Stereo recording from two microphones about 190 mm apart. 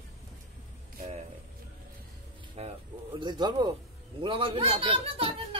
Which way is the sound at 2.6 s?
30° right (ahead or behind).